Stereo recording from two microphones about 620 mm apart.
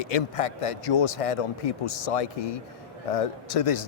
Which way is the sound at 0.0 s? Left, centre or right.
Left.